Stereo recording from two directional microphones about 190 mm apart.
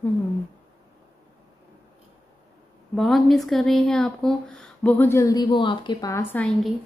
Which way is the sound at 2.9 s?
Centre (ahead or behind).